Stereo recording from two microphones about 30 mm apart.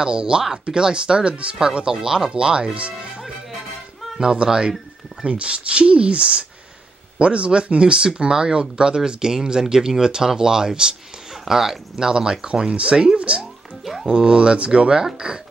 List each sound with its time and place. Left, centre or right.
0.0 s speech: right
1.9 s speech: right
4.2 s speech: right
5.2 s speech: right
11.4 s speech: centre
12.0 s speech: right
12.4 s speech: right
13.2 s speech: right
14.0 s speech: right